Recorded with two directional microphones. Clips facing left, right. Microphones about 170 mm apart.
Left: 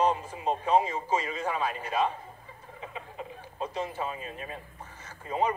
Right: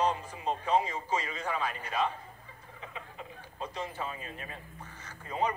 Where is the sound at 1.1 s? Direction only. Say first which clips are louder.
Left 3 dB; 20° left (ahead or behind).